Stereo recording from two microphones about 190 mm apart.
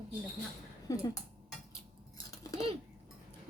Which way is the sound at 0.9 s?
20° left (ahead or behind).